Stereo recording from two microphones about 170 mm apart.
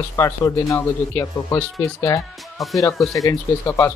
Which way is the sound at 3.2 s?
15° left (ahead or behind).